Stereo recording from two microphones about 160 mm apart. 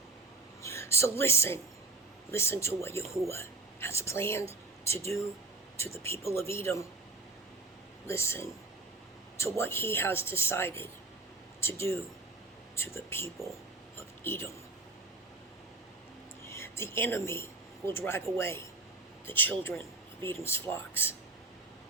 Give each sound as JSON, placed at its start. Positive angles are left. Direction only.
{"t": 0.6, "sound": "speech", "side_deg": 15}
{"t": 5.7, "sound": "speech", "side_deg": 15}
{"t": 8.0, "sound": "speech", "side_deg": 15}
{"t": 16.5, "sound": "speech", "side_deg": 15}